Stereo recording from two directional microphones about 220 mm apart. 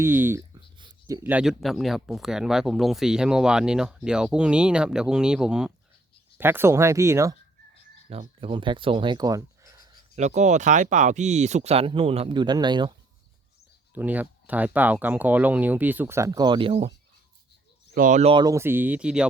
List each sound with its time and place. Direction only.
0.0 s speech: 10° right (ahead or behind)
8.1 s speech: 25° right (ahead or behind)
10.2 s speech: 30° right (ahead or behind)
13.9 s speech: 5° right (ahead or behind); by 16.9 s 25° right (ahead or behind)
17.9 s speech: 35° right (ahead or behind); by 19.3 s 5° right (ahead or behind)